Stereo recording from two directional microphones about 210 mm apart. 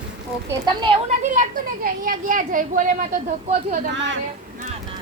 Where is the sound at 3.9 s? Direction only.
60° right (ahead or behind).